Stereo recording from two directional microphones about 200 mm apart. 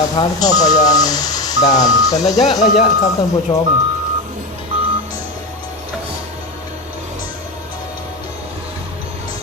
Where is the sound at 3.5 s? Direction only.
20° left (ahead or behind).